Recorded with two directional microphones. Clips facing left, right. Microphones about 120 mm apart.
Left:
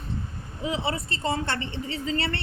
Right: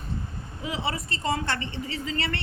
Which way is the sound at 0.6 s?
30° left (ahead or behind).